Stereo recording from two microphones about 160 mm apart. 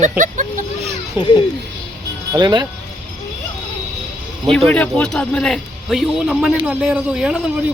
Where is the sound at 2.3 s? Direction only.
25° right (ahead or behind).